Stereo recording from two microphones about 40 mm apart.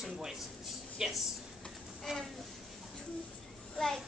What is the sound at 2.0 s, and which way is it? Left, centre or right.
Speech, centre.